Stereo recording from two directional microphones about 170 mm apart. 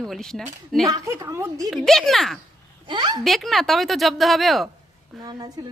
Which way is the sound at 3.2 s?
Centre (ahead or behind).